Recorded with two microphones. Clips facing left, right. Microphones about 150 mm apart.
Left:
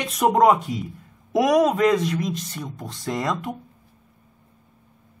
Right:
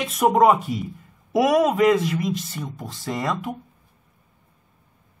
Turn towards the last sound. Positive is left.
turn(degrees=0)  # may be behind; listen again after turning